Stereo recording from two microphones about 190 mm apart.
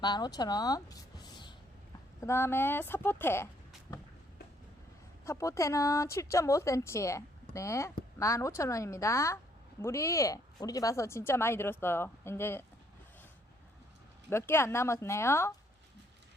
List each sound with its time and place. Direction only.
0.0 s a woman's voice: 20° left (ahead or behind)
5.2 s speech: 15° left (ahead or behind)
14.3 s speech: 10° left (ahead or behind)